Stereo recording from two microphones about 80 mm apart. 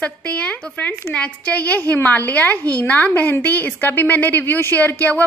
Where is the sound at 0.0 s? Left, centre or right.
Centre.